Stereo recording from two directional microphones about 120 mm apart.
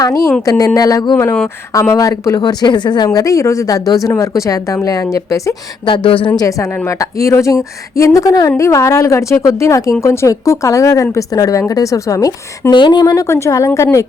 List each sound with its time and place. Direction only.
0.0 s speech: 30° left (ahead or behind)
5.8 s speech: 45° left (ahead or behind)
6.3 s speech: 30° left (ahead or behind)
12.7 s speech: 40° left (ahead or behind); by 14.1 s 25° left (ahead or behind)